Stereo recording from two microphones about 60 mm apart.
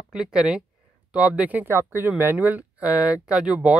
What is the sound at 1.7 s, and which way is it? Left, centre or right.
Speech, right.